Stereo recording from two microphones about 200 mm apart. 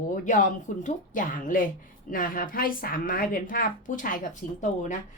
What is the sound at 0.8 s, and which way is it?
Speech, 40° left (ahead or behind).